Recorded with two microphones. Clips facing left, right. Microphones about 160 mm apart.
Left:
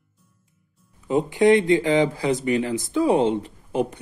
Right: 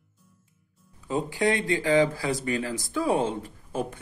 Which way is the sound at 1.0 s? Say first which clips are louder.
Left 8 dB; 20° left (ahead or behind).